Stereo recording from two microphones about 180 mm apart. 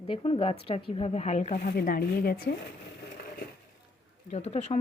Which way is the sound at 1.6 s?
55° left (ahead or behind).